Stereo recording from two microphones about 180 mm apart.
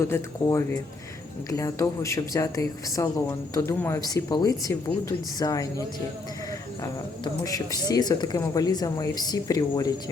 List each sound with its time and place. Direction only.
0.0 s speech: 15° left (ahead or behind)
7.4 s speech: 20° left (ahead or behind)